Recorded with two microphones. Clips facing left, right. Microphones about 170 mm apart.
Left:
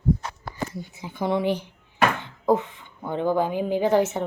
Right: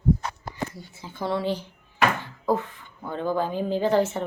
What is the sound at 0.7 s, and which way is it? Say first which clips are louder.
Speech: left 5 dB; 20° left (ahead or behind).